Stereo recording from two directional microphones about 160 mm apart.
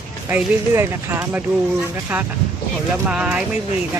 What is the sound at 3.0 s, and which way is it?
Speech, 10° right (ahead or behind).